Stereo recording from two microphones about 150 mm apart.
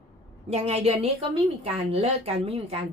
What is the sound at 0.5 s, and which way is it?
A woman's voice, 45° right (ahead or behind).